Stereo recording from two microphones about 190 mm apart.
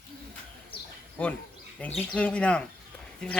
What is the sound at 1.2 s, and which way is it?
Speech, 5° left (ahead or behind).